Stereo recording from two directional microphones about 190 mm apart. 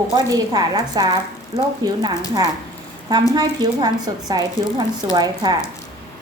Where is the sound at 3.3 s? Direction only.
20° right (ahead or behind).